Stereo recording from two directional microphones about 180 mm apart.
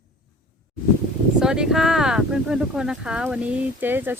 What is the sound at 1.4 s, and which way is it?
Speech, 5° right (ahead or behind).